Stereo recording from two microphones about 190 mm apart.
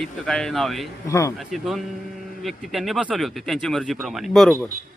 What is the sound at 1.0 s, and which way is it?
Speech, 15° left (ahead or behind).